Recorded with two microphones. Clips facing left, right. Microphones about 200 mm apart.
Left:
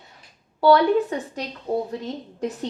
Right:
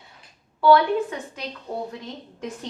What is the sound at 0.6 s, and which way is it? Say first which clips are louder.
Speech: left 1 dB; 35° left (ahead or behind).